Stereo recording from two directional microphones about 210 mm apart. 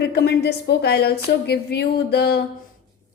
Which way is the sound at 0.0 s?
50° left (ahead or behind).